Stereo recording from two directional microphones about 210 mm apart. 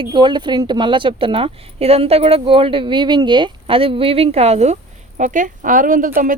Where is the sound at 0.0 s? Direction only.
20° right (ahead or behind).